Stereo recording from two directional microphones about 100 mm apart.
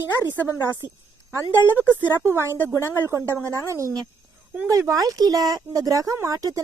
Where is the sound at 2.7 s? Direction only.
30° left (ahead or behind).